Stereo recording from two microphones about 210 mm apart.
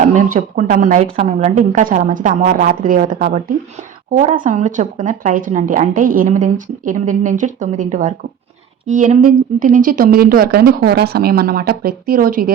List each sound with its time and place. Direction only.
0.0 s speech: 35° right (ahead or behind)